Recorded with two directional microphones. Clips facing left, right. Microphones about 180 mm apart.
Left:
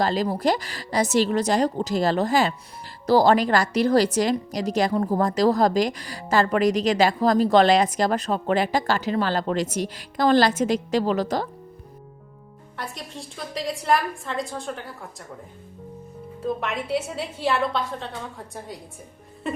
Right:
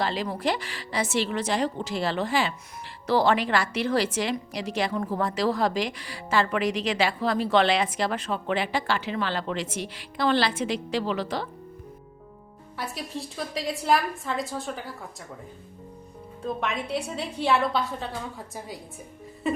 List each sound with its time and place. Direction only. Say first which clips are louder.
0.0 s a woman's voice: left 5 dB; 40° left (ahead or behind)
12.7 s a woman's voice: right 2 dB; 5° right (ahead or behind)
16.4 s a woman's voice: left 2 dB; centre (ahead or behind)
19.4 s music: right 2 dB; centre (ahead or behind)